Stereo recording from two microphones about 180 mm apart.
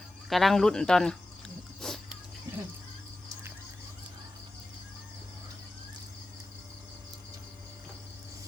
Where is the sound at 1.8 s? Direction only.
Centre (ahead or behind).